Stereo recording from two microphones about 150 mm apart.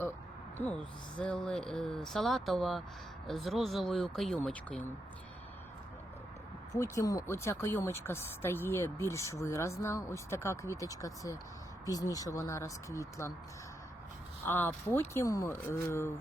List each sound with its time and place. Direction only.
0.6 s speech: 10° left (ahead or behind)
6.7 s speech: 20° left (ahead or behind)
14.4 s speech: 15° left (ahead or behind)